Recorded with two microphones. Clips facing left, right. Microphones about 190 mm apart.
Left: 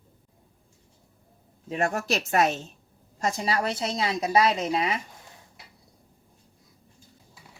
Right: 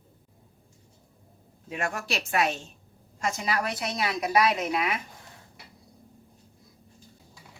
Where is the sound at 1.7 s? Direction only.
35° left (ahead or behind).